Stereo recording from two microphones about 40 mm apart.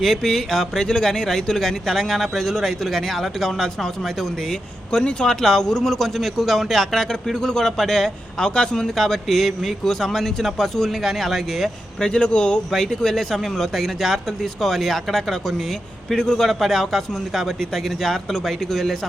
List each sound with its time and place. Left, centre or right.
0.0 s speech: centre
0.9 s speech: centre
4.9 s speech: left
9.0 s speech: centre
9.8 s speech: centre
11.9 s speech: left
12.7 s speech: centre
16.5 s speech: centre